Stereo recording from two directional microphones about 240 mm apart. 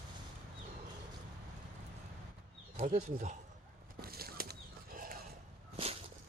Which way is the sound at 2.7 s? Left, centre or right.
Right.